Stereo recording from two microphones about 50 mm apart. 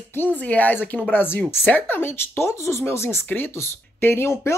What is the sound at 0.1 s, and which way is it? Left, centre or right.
Speech, left.